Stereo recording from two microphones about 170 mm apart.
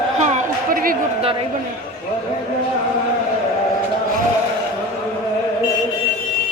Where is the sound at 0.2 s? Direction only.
45° right (ahead or behind).